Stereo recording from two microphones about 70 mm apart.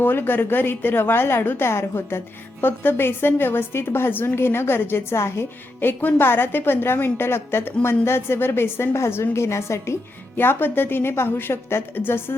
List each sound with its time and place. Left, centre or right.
0.0 s a woman's voice: left